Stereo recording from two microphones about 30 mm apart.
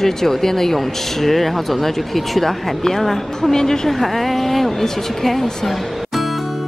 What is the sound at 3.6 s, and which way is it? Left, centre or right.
Speech, centre.